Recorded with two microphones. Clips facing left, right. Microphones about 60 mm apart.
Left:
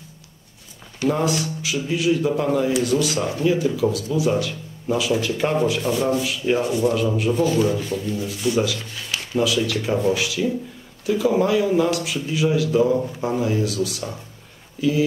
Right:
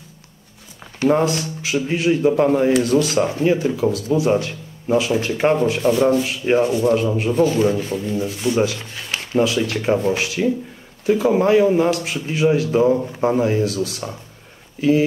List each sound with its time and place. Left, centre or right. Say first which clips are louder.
1.0 s a man's voice: right 4 dB; right